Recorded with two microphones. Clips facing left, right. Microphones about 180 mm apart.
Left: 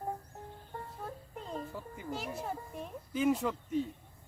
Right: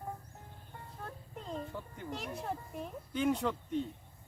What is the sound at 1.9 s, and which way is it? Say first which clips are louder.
Speech: left 3 dB; 5° left (ahead or behind).